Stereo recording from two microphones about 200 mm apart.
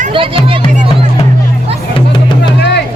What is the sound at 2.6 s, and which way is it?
Music, 55° left (ahead or behind).